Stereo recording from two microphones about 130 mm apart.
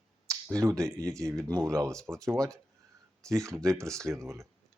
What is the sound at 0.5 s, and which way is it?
Speech, 25° right (ahead or behind).